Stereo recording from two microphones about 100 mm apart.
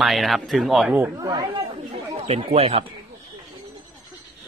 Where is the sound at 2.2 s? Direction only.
90° right.